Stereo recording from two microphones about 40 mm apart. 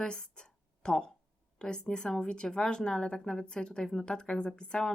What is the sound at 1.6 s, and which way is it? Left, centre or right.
Speech, left.